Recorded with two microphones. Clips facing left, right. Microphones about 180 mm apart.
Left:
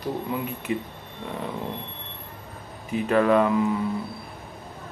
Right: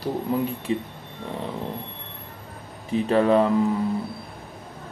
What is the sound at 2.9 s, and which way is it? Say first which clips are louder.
Speech: right 1 dB; 30° right (ahead or behind).